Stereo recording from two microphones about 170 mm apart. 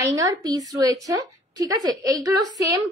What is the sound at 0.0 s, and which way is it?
A woman's voice, 20° right (ahead or behind).